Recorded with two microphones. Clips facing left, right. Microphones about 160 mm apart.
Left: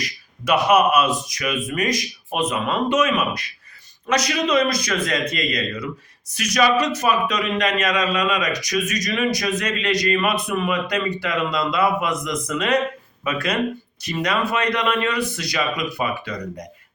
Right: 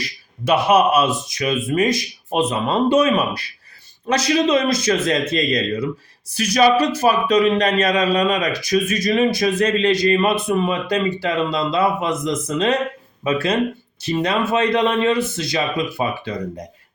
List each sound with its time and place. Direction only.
0.0 s a man's voice: 30° right (ahead or behind)